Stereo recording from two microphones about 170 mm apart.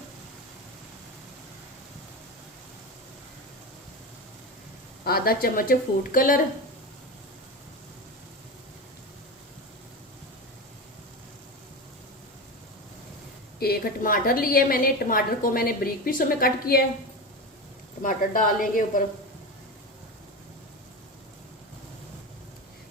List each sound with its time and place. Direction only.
5.0 s a woman's voice: 65° left (ahead or behind)
13.6 s a woman's voice: 60° left (ahead or behind)
18.0 s a woman's voice: 50° left (ahead or behind)